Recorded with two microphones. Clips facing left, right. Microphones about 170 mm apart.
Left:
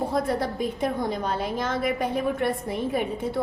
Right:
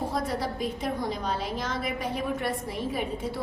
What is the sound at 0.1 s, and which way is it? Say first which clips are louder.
A woman's voice: left 4 dB; 55° left (ahead or behind).